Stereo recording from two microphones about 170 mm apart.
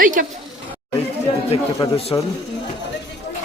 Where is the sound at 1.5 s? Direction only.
35° left (ahead or behind).